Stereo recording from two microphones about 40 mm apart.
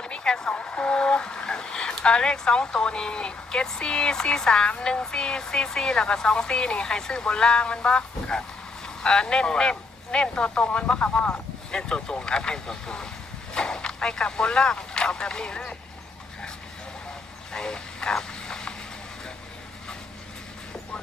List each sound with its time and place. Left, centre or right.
0.0 s vehicle: left
0.5 s speech: left
11.7 s speech: centre
17.5 s vehicle: centre